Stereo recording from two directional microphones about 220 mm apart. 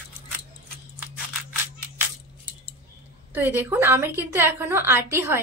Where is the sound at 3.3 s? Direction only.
10° right (ahead or behind).